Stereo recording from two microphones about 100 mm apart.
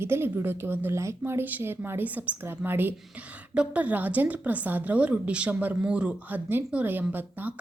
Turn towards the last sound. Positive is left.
turn(degrees=-15)  # may be behind; listen again after turning